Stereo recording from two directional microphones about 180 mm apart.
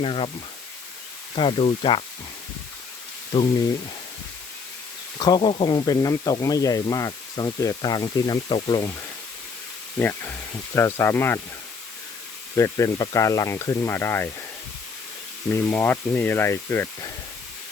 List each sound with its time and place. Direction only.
0.0 s speech: 30° left (ahead or behind)
1.4 s speech: 30° left (ahead or behind)
3.3 s speech: 25° left (ahead or behind)
5.1 s speech: 25° left (ahead or behind)
10.0 s speech: 10° left (ahead or behind)
12.5 s speech: 15° left (ahead or behind)
15.4 s speech: 10° left (ahead or behind)